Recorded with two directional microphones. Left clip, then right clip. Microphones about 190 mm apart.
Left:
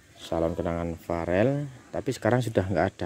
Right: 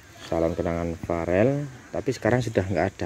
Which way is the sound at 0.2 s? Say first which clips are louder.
Right 3 dB; 15° left (ahead or behind).